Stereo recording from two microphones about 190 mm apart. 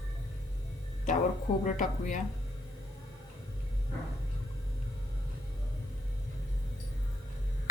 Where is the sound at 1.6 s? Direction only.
40° left (ahead or behind).